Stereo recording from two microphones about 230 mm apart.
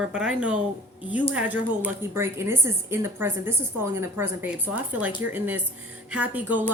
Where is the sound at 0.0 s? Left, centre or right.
Centre.